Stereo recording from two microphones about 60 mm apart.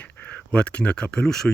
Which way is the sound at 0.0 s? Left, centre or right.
Left.